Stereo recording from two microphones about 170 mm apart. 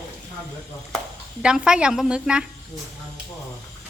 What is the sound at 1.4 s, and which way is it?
A woman's voice, 5° right (ahead or behind).